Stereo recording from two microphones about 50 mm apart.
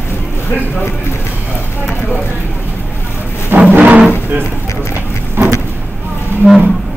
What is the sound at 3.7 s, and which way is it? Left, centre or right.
Music, right.